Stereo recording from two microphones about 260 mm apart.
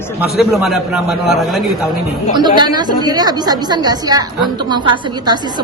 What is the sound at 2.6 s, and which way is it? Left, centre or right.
A woman's voice, centre.